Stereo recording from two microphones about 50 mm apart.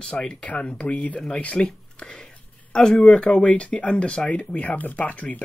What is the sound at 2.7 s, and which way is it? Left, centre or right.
Speech, centre.